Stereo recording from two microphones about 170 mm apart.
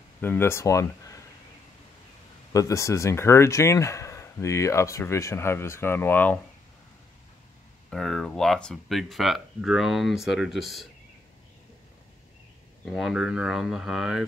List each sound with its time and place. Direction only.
0.2 s speech: 10° left (ahead or behind)
2.5 s speech: 20° left (ahead or behind)
7.9 s speech: centre (ahead or behind)
12.8 s speech: centre (ahead or behind)